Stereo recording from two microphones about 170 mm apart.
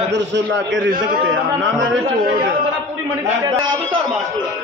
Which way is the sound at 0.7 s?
90° right.